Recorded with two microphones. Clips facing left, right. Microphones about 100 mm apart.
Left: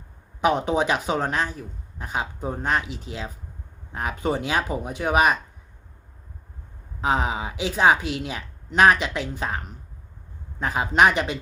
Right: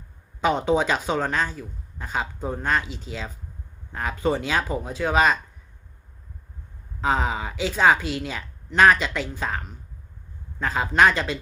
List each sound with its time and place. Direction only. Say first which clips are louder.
0.4 s speech: even; 15° left (ahead or behind)
7.0 s speech: even; 10° left (ahead or behind)
10.6 s speech: even; 15° left (ahead or behind)